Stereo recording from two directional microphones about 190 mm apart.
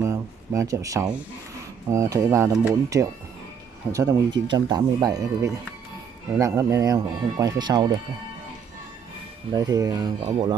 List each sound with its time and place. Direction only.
0.0 s a sound: 15° right (ahead or behind)
1.9 s speech: 15° right (ahead or behind)
9.5 s speech: 20° right (ahead or behind)